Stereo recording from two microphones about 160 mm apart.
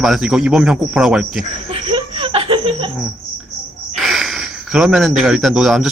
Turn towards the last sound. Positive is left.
turn(degrees=-5)  # may be behind; listen again after turning